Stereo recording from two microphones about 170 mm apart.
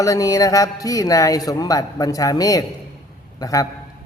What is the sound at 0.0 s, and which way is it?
A man's voice, 20° left (ahead or behind).